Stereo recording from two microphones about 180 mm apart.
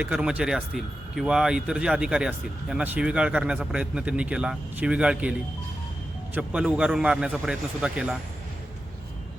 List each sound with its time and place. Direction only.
0.0 s speech: 5° right (ahead or behind)